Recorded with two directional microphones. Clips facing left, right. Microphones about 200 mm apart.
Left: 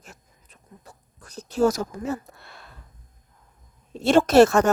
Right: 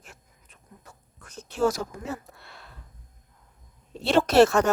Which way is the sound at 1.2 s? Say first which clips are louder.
Left 4 dB; 35° left (ahead or behind).